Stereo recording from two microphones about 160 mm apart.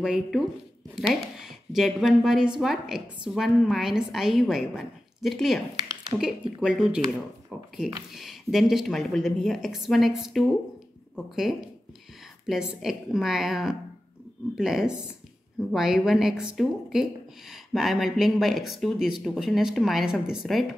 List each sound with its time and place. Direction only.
0.0 s speech: 5° right (ahead or behind)